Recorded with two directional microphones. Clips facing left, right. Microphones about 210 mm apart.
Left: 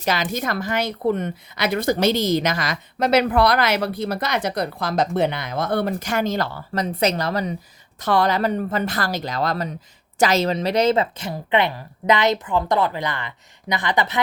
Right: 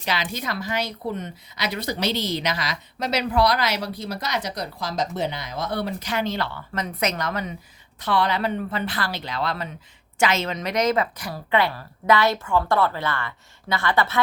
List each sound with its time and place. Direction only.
0.0 s a woman's voice: 45° left (ahead or behind); by 14.2 s 15° left (ahead or behind)